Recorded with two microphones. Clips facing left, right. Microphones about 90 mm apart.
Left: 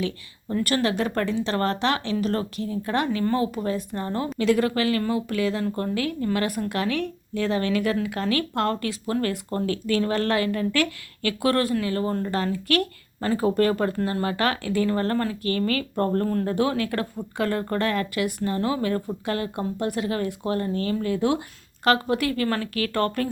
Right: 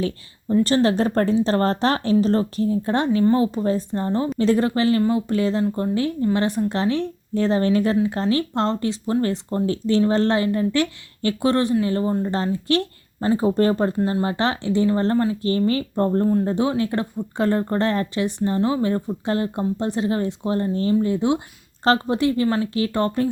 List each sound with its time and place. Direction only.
0.5 s speech: 30° right (ahead or behind)
5.6 s speech: 20° right (ahead or behind)